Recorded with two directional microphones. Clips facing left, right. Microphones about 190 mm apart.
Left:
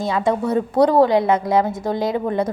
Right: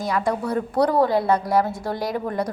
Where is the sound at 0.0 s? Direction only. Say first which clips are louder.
Left 4 dB; 25° left (ahead or behind).